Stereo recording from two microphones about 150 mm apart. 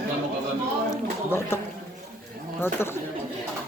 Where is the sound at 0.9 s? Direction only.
15° left (ahead or behind).